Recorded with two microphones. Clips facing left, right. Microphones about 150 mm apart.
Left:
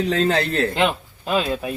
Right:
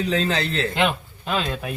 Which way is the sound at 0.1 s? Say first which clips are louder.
Left 3 dB; 55° left (ahead or behind).